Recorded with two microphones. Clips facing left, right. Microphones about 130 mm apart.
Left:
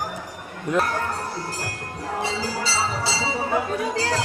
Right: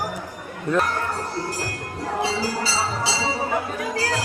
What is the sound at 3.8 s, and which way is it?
Speech, 25° left (ahead or behind).